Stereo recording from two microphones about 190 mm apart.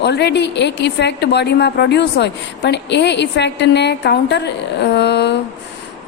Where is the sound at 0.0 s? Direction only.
60° left (ahead or behind).